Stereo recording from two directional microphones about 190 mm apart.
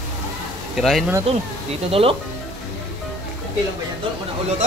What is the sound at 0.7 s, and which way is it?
Speech, centre (ahead or behind).